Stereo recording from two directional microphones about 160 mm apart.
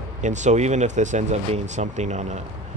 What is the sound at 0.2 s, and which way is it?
Speech, 50° right (ahead or behind).